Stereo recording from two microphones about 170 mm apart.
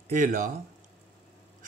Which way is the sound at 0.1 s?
50° right (ahead or behind).